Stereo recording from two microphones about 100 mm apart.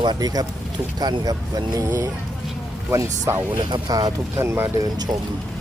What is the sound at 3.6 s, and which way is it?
Speech, 45° right (ahead or behind).